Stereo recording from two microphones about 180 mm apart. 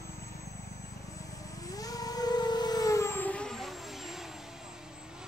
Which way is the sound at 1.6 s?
20° left (ahead or behind).